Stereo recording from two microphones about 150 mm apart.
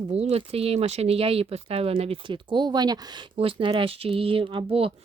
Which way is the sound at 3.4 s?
35° right (ahead or behind).